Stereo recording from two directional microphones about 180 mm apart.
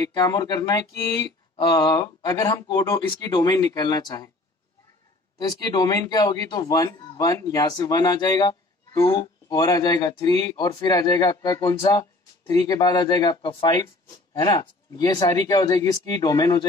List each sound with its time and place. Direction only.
0.0 s speech: 20° left (ahead or behind)
5.5 s speech: 20° left (ahead or behind)